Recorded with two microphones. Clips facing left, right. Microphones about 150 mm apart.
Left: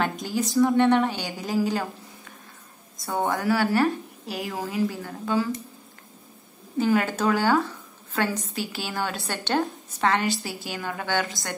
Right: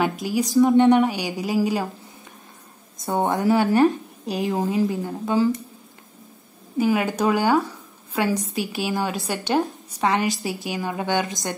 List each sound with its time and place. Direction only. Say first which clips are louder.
0.0 s a woman's voice: right 4 dB; 10° right (ahead or behind)
0.6 s a woman's voice: right 4 dB; 20° right (ahead or behind)
3.0 s a woman's voice: right 4 dB; 20° right (ahead or behind)
6.8 s a woman's voice: right 2 dB; 10° right (ahead or behind)